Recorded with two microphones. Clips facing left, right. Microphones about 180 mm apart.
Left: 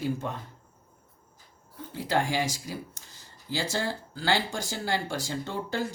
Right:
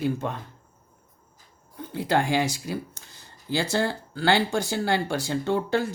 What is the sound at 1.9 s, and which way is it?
Speech, 60° right (ahead or behind).